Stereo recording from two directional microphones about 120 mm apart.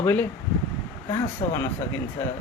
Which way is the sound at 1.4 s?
35° left (ahead or behind).